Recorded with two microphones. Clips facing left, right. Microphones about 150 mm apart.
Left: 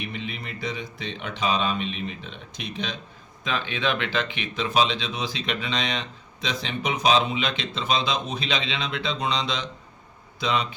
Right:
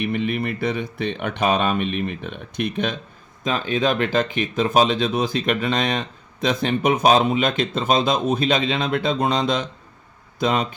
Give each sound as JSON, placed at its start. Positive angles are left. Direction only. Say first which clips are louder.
{"t": 0.0, "sound": "speech", "louder": "right 11 dB", "side_deg": -55}
{"t": 3.4, "sound": "speech", "louder": "right 6 dB", "side_deg": -40}